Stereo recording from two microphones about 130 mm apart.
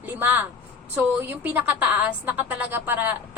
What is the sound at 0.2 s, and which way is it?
A woman's voice, 15° right (ahead or behind).